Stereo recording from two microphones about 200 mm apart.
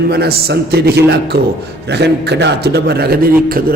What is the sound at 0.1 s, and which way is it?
A man's voice, 50° right (ahead or behind).